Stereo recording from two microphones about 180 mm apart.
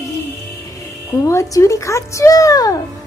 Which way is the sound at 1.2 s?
15° left (ahead or behind).